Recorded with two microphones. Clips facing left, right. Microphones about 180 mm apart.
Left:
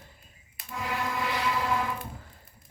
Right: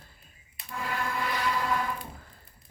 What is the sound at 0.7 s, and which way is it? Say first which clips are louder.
Music: left 1 dB; 15° left (ahead or behind).